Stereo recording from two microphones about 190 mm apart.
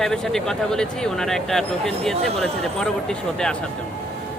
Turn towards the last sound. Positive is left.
turn(degrees=5)  # may be behind; listen again after turning